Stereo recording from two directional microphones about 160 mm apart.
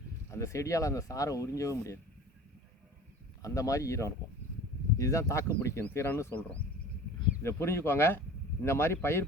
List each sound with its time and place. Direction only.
0.3 s speech: 20° left (ahead or behind)
3.4 s speech: 20° left (ahead or behind)